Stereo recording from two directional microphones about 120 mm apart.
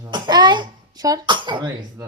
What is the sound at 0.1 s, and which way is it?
Cough, 40° right (ahead or behind).